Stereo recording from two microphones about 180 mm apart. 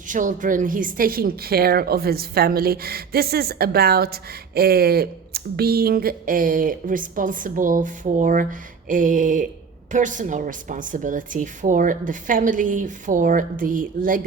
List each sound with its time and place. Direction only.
0.1 s a woman's voice: 45° right (ahead or behind)